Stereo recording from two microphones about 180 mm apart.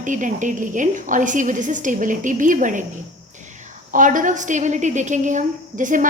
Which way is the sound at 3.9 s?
45° right (ahead or behind).